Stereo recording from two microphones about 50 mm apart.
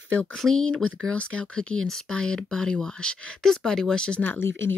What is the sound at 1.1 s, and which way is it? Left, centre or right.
Speech, left.